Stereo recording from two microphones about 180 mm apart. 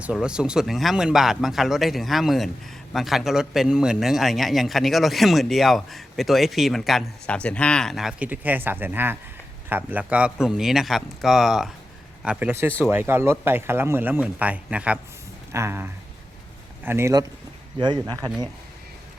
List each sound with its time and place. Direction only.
0.0 s a man's voice: 5° right (ahead or behind); by 18.2 s 20° right (ahead or behind)